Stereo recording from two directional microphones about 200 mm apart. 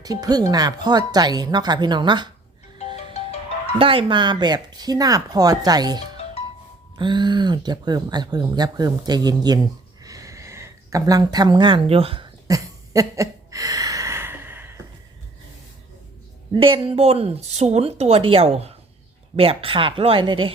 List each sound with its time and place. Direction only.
0.0 s speech: 20° right (ahead or behind)
2.7 s music: 35° left (ahead or behind)
3.8 s speech: 25° right (ahead or behind)
10.0 s a sound: 15° right (ahead or behind)
16.5 s speech: 25° right (ahead or behind)